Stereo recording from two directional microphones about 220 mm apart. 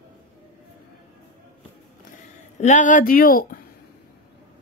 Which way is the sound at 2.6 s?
35° left (ahead or behind).